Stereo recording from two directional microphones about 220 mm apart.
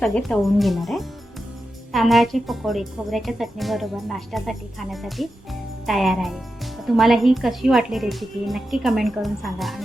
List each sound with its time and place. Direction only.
0.0 s speech: centre (ahead or behind)